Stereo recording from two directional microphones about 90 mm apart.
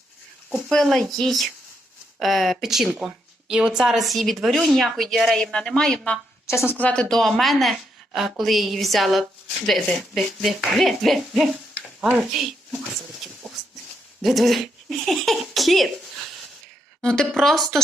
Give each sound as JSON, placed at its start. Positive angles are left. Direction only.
{"t": 0.5, "sound": "speech", "side_deg": 5}
{"t": 6.7, "sound": "speech", "side_deg": 10}
{"t": 14.2, "sound": "speech", "side_deg": 0}